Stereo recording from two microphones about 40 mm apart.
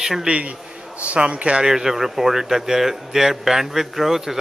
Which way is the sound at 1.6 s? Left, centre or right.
Centre.